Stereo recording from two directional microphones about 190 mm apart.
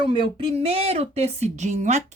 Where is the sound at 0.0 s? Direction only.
25° right (ahead or behind).